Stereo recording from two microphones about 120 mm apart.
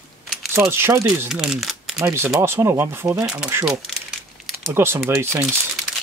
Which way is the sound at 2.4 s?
20° right (ahead or behind).